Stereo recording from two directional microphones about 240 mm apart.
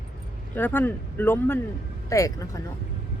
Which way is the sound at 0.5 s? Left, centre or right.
Centre.